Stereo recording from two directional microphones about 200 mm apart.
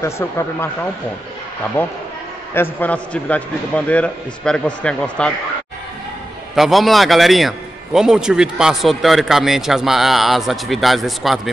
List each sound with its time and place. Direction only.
0.0 s a man's voice: 15° left (ahead or behind)
1.8 s a man's voice: 10° left (ahead or behind)
6.5 s a man's voice: centre (ahead or behind)